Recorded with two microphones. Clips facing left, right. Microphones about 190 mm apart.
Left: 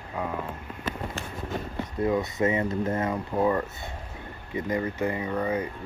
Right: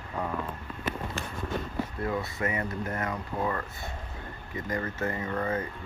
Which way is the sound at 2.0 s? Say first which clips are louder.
Left 9 dB; 20° left (ahead or behind).